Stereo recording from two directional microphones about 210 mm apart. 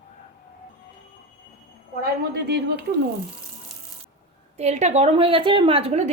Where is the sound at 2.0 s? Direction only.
50° right (ahead or behind).